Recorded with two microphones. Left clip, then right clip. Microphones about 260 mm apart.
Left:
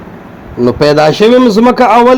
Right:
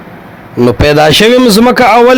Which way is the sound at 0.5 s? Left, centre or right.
Right.